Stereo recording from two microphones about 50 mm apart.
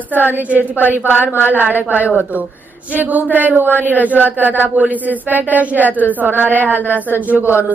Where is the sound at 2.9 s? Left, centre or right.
Right.